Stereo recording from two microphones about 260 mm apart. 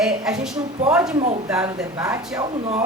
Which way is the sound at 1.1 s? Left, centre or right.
Right.